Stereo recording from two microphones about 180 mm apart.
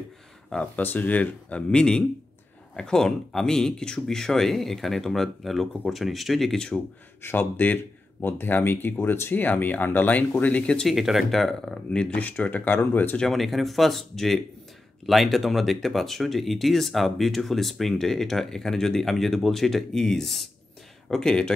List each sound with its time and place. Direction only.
0.5 s speech: 5° left (ahead or behind)